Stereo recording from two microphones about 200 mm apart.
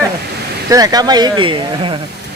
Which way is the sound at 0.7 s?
15° right (ahead or behind).